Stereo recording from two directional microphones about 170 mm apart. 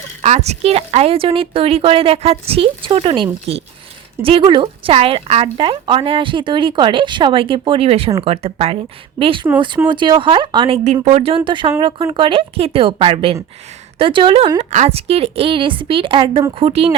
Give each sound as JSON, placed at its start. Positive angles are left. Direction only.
{"t": 0.2, "sound": "speech", "side_deg": -40}
{"t": 14.6, "sound": "speech", "side_deg": -40}